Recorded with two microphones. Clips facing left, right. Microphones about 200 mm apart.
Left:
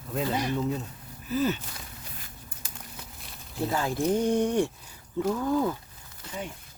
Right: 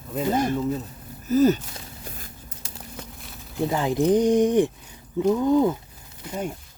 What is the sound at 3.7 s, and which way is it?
Speech, 20° right (ahead or behind).